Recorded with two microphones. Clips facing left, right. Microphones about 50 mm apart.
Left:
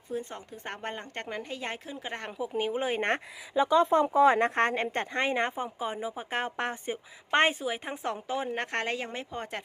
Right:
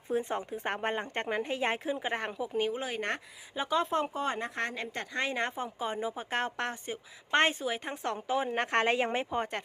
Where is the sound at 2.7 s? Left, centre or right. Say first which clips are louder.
Left 5 dB; left.